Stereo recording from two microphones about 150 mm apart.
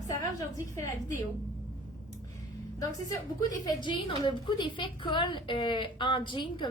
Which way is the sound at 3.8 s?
30° left (ahead or behind).